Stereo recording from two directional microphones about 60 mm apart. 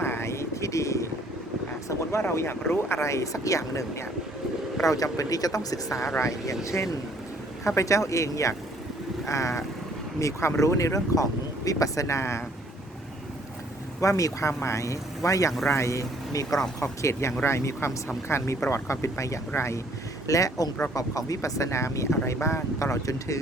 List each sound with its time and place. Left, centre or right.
0.0 s vehicle: left
2.3 s speech: left
4.9 s speech: left
6.1 s speech: left
7.8 s speech: left
14.0 s speech: left
17.0 s speech: left
20.2 s speech: left